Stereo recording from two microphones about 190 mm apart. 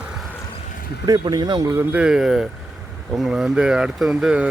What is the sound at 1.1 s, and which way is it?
Speech, 20° right (ahead or behind).